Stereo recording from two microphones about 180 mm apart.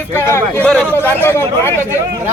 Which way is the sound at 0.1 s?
15° left (ahead or behind).